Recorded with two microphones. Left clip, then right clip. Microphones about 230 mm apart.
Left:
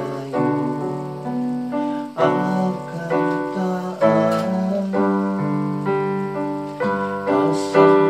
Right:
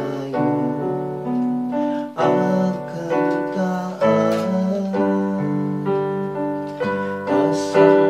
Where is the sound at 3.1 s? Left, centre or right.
Left.